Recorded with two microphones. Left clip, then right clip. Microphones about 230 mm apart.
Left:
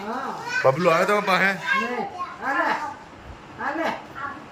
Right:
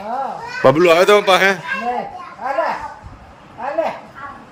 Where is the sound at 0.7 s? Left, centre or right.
Right.